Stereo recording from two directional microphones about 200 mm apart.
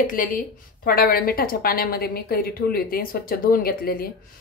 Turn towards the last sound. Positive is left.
turn(degrees=50)  # may be behind; listen again after turning